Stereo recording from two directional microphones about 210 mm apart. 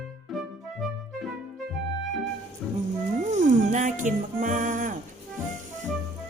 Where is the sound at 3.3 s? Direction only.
35° right (ahead or behind).